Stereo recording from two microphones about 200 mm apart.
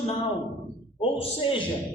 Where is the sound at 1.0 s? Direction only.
25° left (ahead or behind).